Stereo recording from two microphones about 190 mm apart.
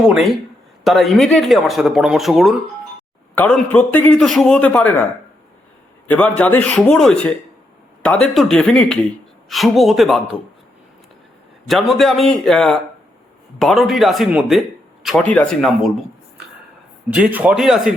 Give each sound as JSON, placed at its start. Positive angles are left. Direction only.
{"t": 0.0, "sound": "a man's voice", "side_deg": -5}
{"t": 6.1, "sound": "a man's voice", "side_deg": 5}
{"t": 11.7, "sound": "speech", "side_deg": 0}
{"t": 17.1, "sound": "speech", "side_deg": -5}